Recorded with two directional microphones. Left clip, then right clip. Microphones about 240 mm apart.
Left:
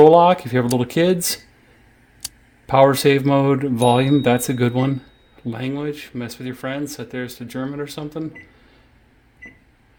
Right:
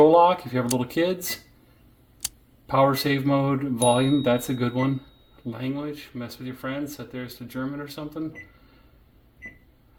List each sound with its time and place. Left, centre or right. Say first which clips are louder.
0.1 s speech: left 5 dB; left
2.2 s a sound: even; centre
2.6 s speech: left 7 dB; left